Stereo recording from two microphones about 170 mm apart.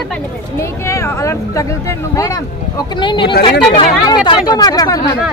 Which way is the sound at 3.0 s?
25° left (ahead or behind).